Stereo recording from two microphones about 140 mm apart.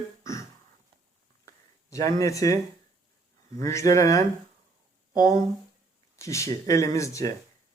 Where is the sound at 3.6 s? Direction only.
20° left (ahead or behind).